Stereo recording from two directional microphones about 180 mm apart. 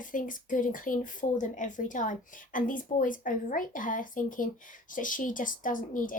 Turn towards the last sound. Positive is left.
turn(degrees=50)  # may be behind; listen again after turning